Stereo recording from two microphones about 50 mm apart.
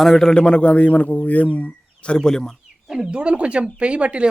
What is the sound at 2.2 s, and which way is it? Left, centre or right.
Speech, centre.